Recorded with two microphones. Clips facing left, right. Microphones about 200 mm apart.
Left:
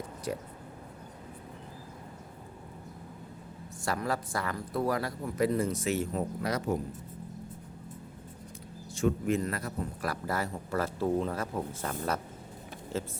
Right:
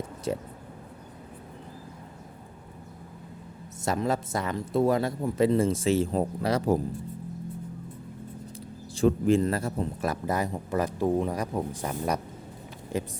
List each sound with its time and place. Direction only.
0.3 s speech: 25° right (ahead or behind)
3.8 s speech: 20° right (ahead or behind)
9.0 s a man's voice: 30° right (ahead or behind); by 13.1 s 15° right (ahead or behind)